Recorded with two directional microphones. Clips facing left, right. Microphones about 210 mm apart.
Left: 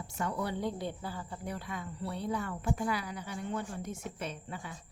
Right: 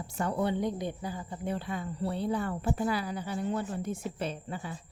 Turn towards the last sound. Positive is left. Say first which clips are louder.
# right 5 dB
turn(degrees=-30)  # may be behind; listen again after turning